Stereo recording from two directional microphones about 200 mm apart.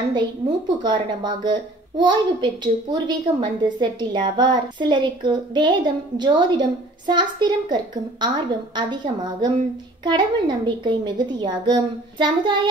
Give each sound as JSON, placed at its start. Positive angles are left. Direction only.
{"t": 0.1, "sound": "a woman's voice", "side_deg": -20}